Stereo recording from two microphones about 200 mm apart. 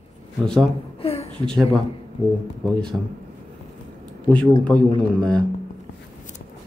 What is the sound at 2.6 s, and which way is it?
Speech, 5° left (ahead or behind).